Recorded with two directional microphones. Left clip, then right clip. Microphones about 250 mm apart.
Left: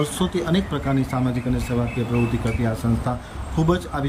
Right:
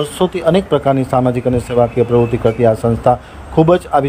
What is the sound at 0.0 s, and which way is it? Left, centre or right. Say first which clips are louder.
Speech: right 10 dB; right.